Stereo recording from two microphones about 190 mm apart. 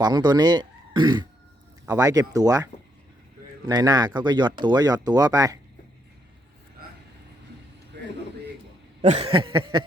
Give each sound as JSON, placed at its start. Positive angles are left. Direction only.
{"t": 0.0, "sound": "speech", "side_deg": -20}
{"t": 3.7, "sound": "speech", "side_deg": -20}
{"t": 9.0, "sound": "speech", "side_deg": -30}